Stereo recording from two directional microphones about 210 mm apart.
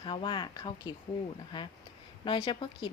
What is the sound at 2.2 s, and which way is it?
Speech, 25° left (ahead or behind).